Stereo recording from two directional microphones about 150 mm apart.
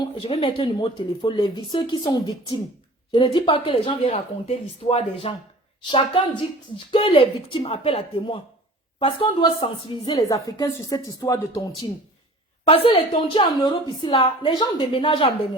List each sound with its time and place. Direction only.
0.0 s a woman's voice: 35° left (ahead or behind)
6.7 s a woman's voice: 35° left (ahead or behind)
12.6 s a woman's voice: 40° left (ahead or behind)